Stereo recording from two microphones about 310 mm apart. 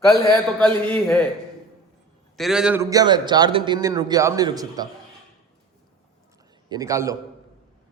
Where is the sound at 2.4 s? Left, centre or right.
Centre.